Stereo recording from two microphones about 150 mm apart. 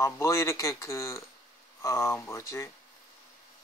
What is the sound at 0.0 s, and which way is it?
Speech, 20° left (ahead or behind).